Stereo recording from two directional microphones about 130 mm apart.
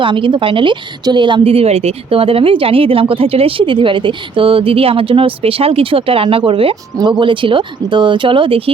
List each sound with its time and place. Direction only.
0.0 s a woman's voice: 40° right (ahead or behind)